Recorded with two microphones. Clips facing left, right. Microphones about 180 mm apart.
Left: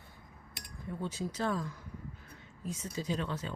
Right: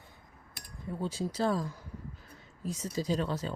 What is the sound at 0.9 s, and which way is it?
Speech, 30° right (ahead or behind).